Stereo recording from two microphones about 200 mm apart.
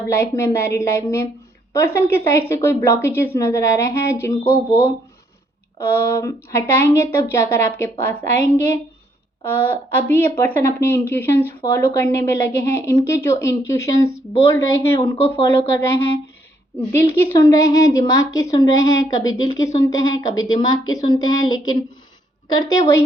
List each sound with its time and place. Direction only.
0.1 s a woman's voice: 15° left (ahead or behind)
5.8 s a woman's voice: 15° left (ahead or behind)
16.9 s a woman's voice: 15° left (ahead or behind)